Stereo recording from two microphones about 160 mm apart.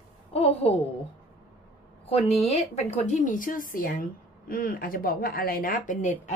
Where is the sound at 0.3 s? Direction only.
40° left (ahead or behind).